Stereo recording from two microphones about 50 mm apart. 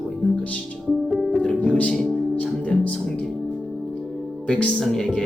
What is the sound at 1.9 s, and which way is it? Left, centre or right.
Speech, centre.